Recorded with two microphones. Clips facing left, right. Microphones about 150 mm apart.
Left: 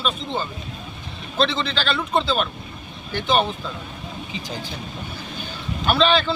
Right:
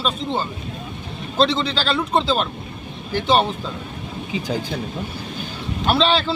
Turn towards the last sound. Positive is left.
turn(degrees=-35)  # may be behind; listen again after turning